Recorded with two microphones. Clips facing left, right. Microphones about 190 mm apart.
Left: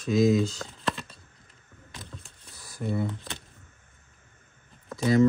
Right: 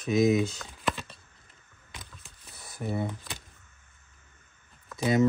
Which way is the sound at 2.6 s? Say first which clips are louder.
Left 2 dB; 20° right (ahead or behind).